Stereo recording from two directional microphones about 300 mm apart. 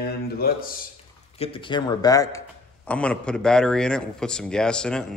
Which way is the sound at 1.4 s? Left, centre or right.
Centre.